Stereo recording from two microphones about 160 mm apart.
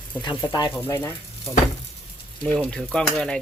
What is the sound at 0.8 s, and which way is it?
Speech, 15° left (ahead or behind).